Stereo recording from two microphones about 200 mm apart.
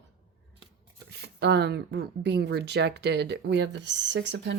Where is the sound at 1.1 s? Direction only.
55° right (ahead or behind).